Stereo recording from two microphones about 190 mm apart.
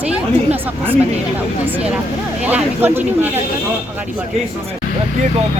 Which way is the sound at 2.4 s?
10° right (ahead or behind).